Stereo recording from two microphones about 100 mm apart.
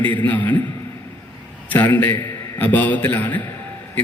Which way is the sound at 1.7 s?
20° left (ahead or behind).